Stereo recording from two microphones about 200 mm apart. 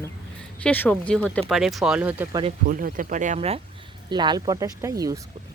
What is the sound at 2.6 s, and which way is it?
Speech, 45° right (ahead or behind).